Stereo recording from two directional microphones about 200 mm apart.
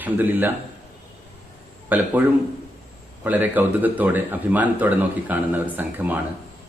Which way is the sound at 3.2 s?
10° right (ahead or behind).